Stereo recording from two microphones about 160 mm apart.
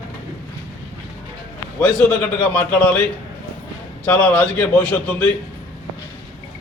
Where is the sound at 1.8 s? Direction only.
10° left (ahead or behind).